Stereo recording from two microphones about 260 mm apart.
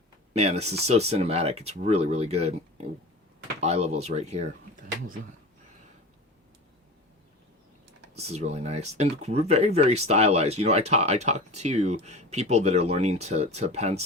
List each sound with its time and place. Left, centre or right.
0.3 s speech: right
8.1 s speech: right